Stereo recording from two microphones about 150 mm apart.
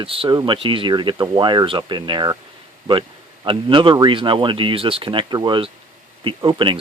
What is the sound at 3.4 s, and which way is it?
Speech, 35° right (ahead or behind).